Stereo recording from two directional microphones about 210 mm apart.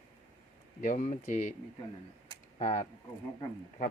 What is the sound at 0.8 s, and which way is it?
Speech, 35° left (ahead or behind).